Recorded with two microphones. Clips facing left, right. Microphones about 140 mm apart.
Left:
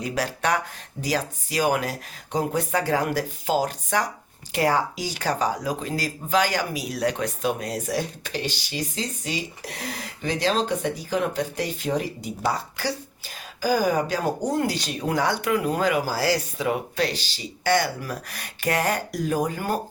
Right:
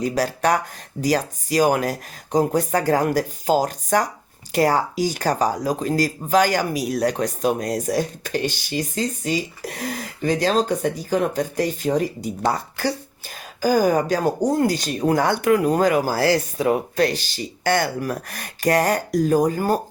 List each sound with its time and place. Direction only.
0.0 s speech: 40° right (ahead or behind)